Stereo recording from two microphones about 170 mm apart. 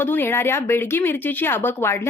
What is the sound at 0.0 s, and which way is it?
Speech, 10° left (ahead or behind).